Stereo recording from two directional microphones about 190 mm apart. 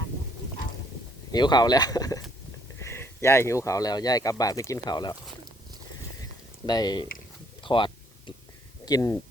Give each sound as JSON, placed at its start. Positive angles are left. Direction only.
{"t": 1.3, "sound": "speech", "side_deg": 20}
{"t": 6.7, "sound": "speech", "side_deg": 20}